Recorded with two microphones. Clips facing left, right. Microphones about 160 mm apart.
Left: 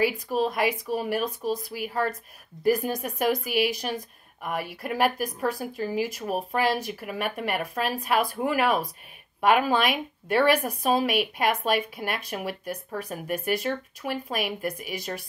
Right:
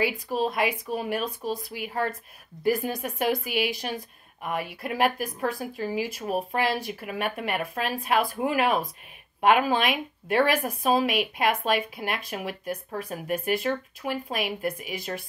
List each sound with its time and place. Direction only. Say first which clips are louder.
0.0 s speech: left 2 dB; 45° left (ahead or behind)